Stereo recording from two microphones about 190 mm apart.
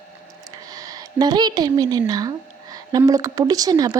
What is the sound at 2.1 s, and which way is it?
A woman's voice, 20° right (ahead or behind).